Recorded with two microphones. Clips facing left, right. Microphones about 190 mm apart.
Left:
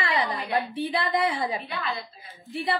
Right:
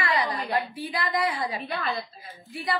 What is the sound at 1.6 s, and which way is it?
Speech, 45° right (ahead or behind).